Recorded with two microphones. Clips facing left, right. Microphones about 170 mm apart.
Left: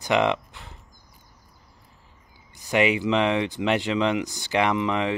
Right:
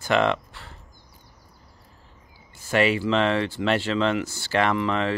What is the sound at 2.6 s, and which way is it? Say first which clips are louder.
Speech: even; 15° left (ahead or behind).